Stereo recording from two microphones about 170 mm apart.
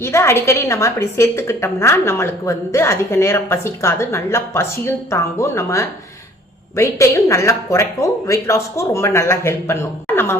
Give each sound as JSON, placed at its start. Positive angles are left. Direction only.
{"t": 0.0, "sound": "a woman's voice", "side_deg": 15}